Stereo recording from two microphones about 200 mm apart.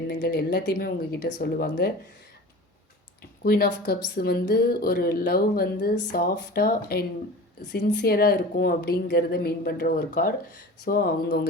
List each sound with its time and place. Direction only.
0.1 s speech: 50° left (ahead or behind)
3.4 s speech: 50° left (ahead or behind)